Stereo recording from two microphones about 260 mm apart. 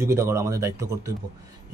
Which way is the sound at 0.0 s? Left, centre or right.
Centre.